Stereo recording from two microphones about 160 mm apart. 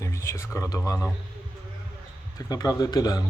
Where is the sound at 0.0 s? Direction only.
20° left (ahead or behind).